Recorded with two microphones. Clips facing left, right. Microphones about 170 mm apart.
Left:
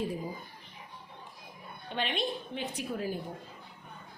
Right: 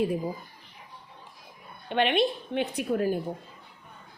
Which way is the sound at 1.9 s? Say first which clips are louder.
Right 9 dB; 65° right (ahead or behind).